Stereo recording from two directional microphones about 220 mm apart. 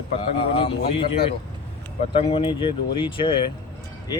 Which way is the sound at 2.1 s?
25° left (ahead or behind).